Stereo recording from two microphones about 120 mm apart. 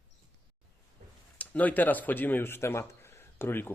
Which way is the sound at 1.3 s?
10° left (ahead or behind).